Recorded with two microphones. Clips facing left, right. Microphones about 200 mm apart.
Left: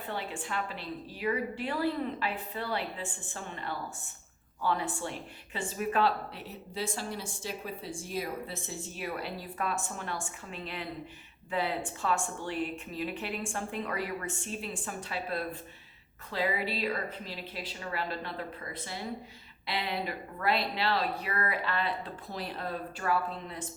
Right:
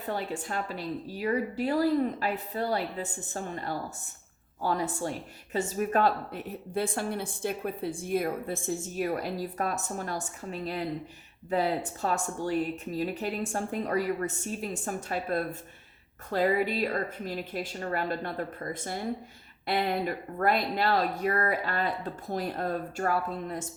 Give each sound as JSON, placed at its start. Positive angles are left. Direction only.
{"t": 0.1, "sound": "a woman's voice", "side_deg": -40}